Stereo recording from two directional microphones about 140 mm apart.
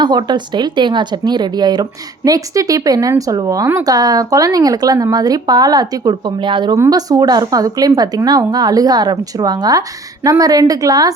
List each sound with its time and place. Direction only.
0.0 s speech: 30° right (ahead or behind)
6.7 s speech: 25° right (ahead or behind)